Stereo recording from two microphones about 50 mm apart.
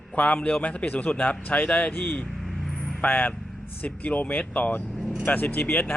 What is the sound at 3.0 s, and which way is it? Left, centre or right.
Speech, left.